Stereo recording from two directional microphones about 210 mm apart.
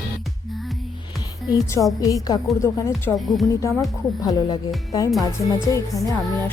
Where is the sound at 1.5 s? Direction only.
15° left (ahead or behind).